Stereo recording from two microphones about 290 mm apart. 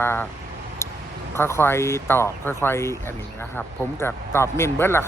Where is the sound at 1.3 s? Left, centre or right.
Centre.